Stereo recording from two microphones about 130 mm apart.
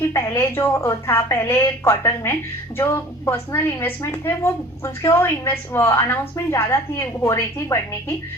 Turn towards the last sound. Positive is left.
turn(degrees=25)  # may be behind; listen again after turning